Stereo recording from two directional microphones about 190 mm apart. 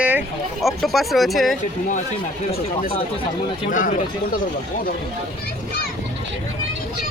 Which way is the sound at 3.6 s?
45° left (ahead or behind).